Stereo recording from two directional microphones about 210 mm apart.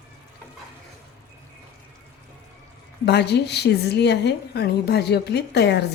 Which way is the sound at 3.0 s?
55° left (ahead or behind).